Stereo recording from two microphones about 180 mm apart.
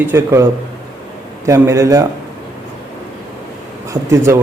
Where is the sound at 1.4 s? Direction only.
15° right (ahead or behind).